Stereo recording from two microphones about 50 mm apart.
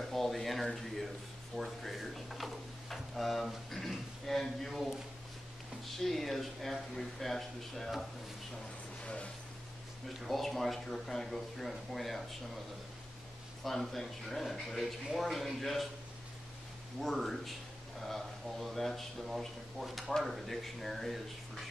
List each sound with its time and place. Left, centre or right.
0.1 s speech: centre
5.9 s speech: centre
9.0 s speech: left
10.2 s speech: centre
13.7 s speech: centre
17.0 s speech: centre